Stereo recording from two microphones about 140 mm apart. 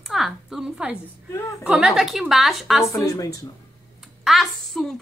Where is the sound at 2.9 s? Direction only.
25° left (ahead or behind).